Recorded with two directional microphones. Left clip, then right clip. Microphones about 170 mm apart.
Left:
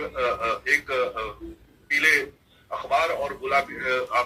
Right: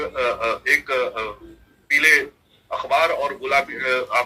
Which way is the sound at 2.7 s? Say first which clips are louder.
Right 4 dB; 25° right (ahead or behind).